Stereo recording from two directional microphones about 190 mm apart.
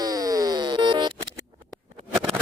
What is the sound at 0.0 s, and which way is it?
Music, 20° right (ahead or behind).